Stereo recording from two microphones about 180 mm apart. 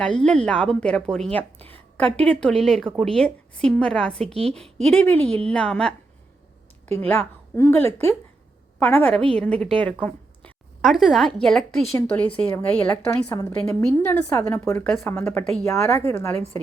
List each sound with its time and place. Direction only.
0.0 s a woman's voice: 5° left (ahead or behind)
4.3 s a woman's voice: 35° right (ahead or behind)
4.9 s a woman's voice: 10° left (ahead or behind)
7.0 s a woman's voice: 10° left (ahead or behind)